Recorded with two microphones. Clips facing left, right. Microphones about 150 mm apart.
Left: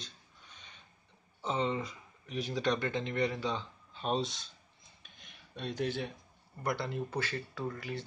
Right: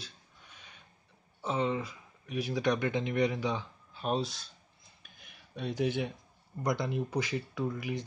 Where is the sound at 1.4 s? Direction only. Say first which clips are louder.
Right 2 dB; 5° right (ahead or behind).